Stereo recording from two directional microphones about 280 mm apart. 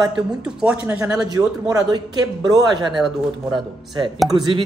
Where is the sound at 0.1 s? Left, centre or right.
Centre.